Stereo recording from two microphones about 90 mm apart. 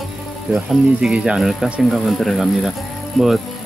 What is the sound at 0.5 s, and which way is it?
Speech, 5° right (ahead or behind).